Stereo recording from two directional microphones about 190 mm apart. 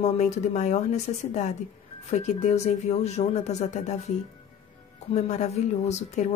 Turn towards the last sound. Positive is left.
turn(degrees=35)  # may be behind; listen again after turning